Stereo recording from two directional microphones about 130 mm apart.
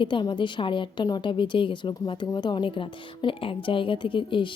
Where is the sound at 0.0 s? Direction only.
40° left (ahead or behind).